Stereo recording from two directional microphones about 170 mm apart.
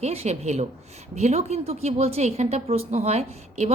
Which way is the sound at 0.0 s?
40° right (ahead or behind).